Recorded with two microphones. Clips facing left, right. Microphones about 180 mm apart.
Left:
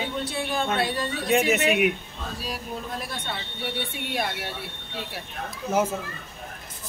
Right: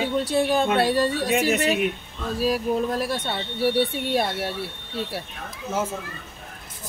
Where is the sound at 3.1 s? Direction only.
35° right (ahead or behind).